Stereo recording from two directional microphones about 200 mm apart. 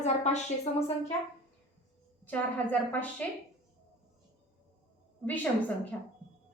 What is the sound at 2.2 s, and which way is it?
A woman's voice, 10° left (ahead or behind).